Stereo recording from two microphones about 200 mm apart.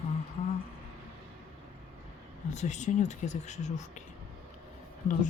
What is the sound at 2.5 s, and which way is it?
Speech, 35° left (ahead or behind).